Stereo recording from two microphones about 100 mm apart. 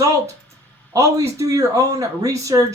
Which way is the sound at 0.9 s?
30° right (ahead or behind).